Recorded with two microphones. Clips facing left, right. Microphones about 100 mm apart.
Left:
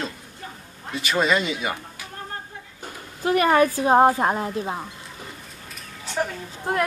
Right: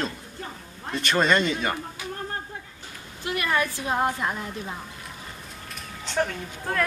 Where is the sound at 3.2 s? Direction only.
40° left (ahead or behind).